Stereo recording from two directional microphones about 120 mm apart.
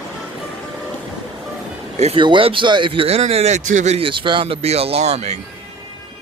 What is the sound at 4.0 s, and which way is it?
Speech, 45° right (ahead or behind).